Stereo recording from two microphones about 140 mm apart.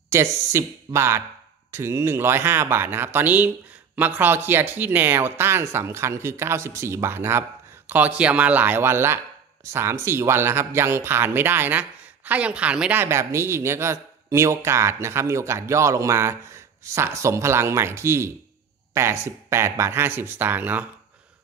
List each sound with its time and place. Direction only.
0.1 s a man's voice: 20° right (ahead or behind)